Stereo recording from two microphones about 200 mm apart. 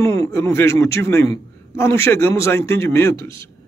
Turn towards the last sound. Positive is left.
turn(degrees=15)  # may be behind; listen again after turning